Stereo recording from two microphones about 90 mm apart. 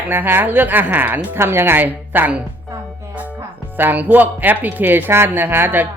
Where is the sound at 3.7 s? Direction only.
20° right (ahead or behind).